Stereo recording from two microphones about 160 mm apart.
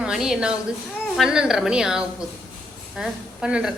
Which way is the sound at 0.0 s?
5° right (ahead or behind).